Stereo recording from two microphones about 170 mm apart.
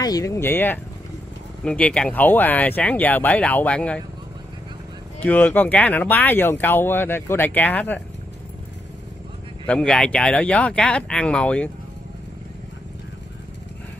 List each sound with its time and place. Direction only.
0.0 s speech: 20° left (ahead or behind)
5.2 s speech: 10° left (ahead or behind)
9.7 s speech: 5° left (ahead or behind)